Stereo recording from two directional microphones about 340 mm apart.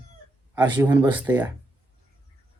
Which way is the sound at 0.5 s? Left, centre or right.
Centre.